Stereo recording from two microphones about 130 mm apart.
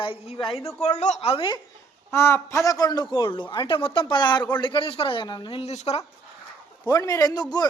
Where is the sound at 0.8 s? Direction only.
60° left (ahead or behind); by 1.6 s 40° left (ahead or behind).